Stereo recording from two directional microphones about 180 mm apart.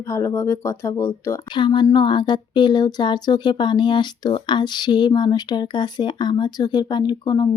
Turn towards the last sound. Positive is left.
turn(degrees=25)  # may be behind; listen again after turning